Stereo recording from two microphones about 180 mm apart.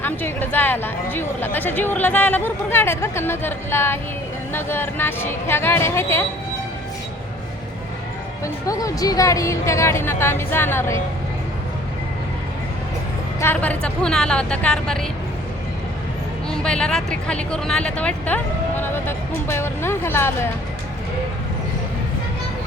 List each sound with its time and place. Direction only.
0.0 s speech: 10° left (ahead or behind)
8.6 s speech: 20° left (ahead or behind)
13.4 s speech: 10° left (ahead or behind)
16.5 s speech: 5° left (ahead or behind)